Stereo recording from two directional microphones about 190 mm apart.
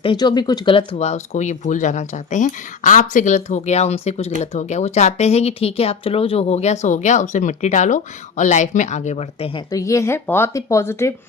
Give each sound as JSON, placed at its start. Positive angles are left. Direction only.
{"t": 0.0, "sound": "speech", "side_deg": 25}
{"t": 9.7, "sound": "speech", "side_deg": 15}